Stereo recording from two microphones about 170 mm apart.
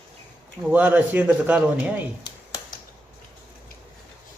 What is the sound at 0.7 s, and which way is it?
A man's voice, 10° right (ahead or behind).